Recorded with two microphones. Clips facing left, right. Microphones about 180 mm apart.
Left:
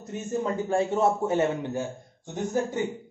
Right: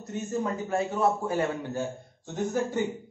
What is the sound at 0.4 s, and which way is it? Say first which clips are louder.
Speech: left 4 dB; 25° left (ahead or behind).